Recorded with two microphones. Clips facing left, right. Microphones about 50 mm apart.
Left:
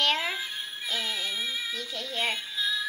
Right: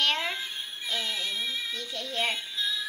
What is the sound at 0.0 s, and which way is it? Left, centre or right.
Speech, centre.